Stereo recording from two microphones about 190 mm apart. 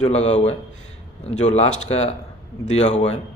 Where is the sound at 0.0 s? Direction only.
35° left (ahead or behind).